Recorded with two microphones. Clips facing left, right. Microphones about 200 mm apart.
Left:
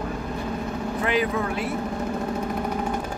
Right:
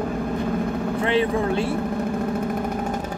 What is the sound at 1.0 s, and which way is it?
Speech, 30° right (ahead or behind).